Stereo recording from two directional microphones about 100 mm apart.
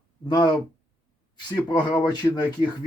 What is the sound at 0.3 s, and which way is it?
Speech, 45° left (ahead or behind).